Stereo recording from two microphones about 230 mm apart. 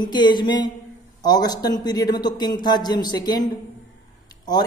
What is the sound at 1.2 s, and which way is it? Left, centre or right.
Speech, centre.